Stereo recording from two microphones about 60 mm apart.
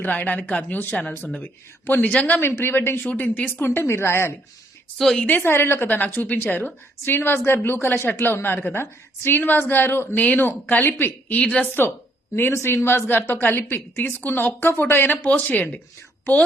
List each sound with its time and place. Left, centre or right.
0.0 s speech: left
2.4 s a woman's voice: left
3.1 s a woman's voice: left
4.9 s a woman's voice: centre
5.4 s a woman's voice: left
10.2 s speech: left
10.4 s a woman's voice: left
10.8 s speech: left
12.4 s a woman's voice: left